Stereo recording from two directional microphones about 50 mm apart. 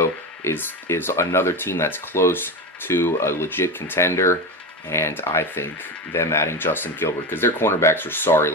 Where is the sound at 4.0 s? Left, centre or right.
Left.